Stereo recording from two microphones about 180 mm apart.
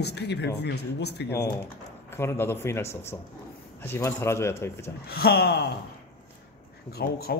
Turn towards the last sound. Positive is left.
turn(degrees=60)  # may be behind; listen again after turning